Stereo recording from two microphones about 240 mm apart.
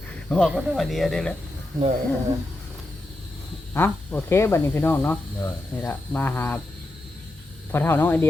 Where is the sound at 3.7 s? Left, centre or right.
Centre.